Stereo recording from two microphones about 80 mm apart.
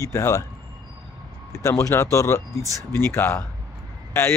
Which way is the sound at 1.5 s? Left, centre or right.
Left.